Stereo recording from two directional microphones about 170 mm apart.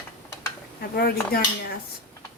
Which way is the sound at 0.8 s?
65° left (ahead or behind).